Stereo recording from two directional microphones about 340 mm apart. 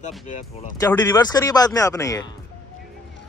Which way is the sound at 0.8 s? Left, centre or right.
Centre.